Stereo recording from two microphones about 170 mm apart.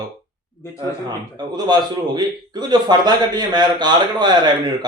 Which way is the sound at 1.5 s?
25° right (ahead or behind).